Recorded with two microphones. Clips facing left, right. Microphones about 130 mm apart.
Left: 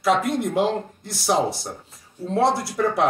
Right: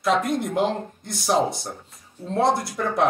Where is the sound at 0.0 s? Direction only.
Centre (ahead or behind).